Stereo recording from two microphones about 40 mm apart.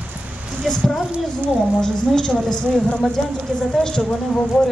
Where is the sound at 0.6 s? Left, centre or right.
Centre.